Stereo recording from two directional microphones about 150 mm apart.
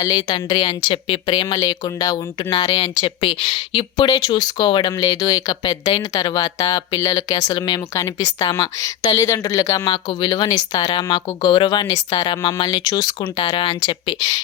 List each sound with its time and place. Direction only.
0.0 s a woman's voice: 30° left (ahead or behind)